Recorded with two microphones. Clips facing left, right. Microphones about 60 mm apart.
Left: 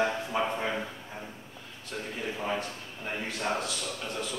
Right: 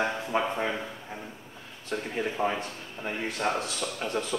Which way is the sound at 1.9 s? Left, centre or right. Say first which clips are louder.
Right 5 dB; right.